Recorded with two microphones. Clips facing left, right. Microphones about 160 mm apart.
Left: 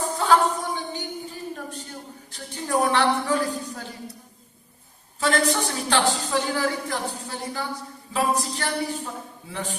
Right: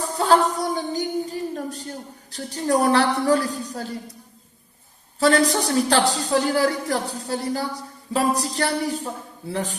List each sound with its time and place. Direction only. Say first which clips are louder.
0.0 s a sound: right 2 dB; 35° right (ahead or behind)
2.3 s a man's voice: right 4 dB; 40° right (ahead or behind)
5.2 s a man's voice: right 4 dB; 35° right (ahead or behind)